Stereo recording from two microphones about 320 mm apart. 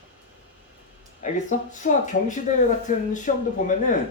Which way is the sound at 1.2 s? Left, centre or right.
Left.